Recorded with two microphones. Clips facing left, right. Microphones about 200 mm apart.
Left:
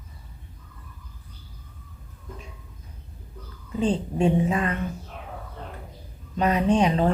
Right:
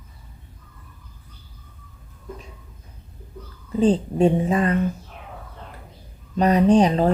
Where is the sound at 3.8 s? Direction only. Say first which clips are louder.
Right 5 dB; 35° right (ahead or behind).